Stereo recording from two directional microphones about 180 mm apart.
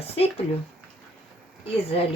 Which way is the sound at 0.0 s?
35° left (ahead or behind).